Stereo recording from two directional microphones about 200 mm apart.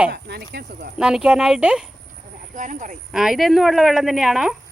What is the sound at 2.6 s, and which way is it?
Speech, 40° right (ahead or behind).